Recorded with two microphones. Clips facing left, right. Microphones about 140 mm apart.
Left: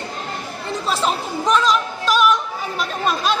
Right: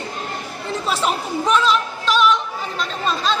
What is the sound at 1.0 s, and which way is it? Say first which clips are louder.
Speech: even; centre (ahead or behind).